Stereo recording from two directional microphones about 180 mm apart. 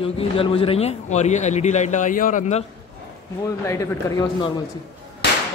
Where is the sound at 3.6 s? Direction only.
20° left (ahead or behind).